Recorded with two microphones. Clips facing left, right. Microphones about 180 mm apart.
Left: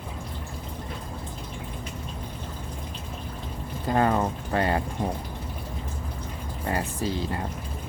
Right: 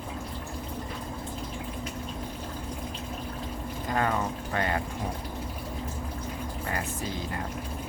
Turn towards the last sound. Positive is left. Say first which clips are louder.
# left 5 dB
turn(degrees=30)  # may be behind; listen again after turning